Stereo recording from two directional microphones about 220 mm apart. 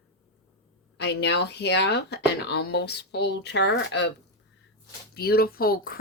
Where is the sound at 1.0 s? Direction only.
50° left (ahead or behind).